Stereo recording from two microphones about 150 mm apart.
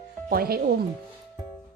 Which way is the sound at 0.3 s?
90° right.